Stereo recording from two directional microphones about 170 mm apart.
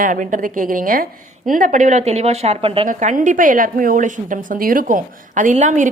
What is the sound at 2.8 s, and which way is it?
A woman's voice, 50° right (ahead or behind).